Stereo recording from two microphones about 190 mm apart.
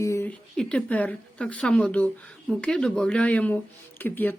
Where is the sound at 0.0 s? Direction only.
15° left (ahead or behind).